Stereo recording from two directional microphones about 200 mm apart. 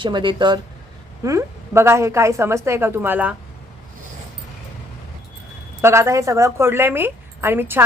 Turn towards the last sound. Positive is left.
turn(degrees=-10)  # may be behind; listen again after turning